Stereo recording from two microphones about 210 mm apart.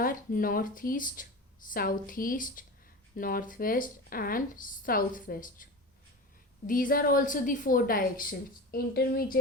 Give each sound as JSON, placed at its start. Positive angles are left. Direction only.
{"t": 0.0, "sound": "a woman's voice", "side_deg": 40}
{"t": 6.7, "sound": "a woman's voice", "side_deg": 40}